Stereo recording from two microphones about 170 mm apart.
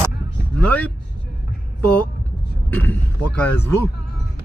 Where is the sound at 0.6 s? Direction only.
10° left (ahead or behind).